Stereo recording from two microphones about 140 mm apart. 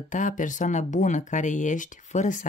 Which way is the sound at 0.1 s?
65° left (ahead or behind).